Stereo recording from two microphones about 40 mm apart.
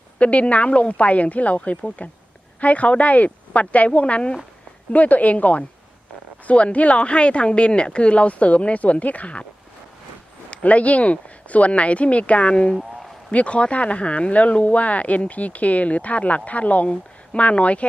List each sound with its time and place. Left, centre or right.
0.2 s speech: left
4.9 s speech: left
10.5 s speech: left